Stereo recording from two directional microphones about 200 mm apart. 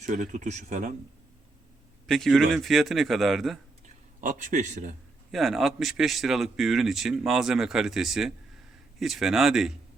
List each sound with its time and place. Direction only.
0.0 s speech: 35° right (ahead or behind)
2.0 s speech: centre (ahead or behind)
3.8 s a man's voice: 40° right (ahead or behind)
5.3 s speech: centre (ahead or behind)